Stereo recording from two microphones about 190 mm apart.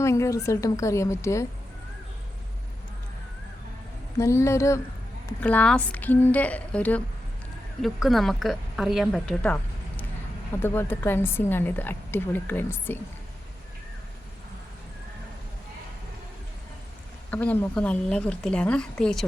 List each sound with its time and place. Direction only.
0.0 s a woman's voice: 15° left (ahead or behind)
4.2 s a woman's voice: 15° left (ahead or behind)
10.6 s a woman's voice: 10° left (ahead or behind)
17.3 s a woman's voice: 10° left (ahead or behind)